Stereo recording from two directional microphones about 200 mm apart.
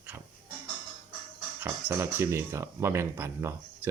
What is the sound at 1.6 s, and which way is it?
Speech, 10° right (ahead or behind).